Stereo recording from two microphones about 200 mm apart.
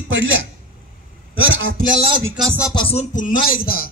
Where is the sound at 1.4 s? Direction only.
70° right (ahead or behind).